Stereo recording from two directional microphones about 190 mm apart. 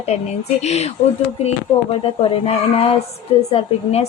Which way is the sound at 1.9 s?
30° left (ahead or behind).